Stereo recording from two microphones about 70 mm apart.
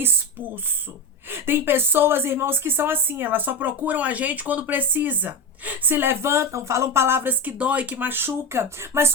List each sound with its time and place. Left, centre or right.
1.3 s a woman's voice: right
7.6 s speech: centre; by 9.1 s right